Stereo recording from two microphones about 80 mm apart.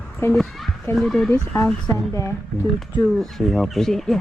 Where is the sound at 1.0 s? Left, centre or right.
Centre.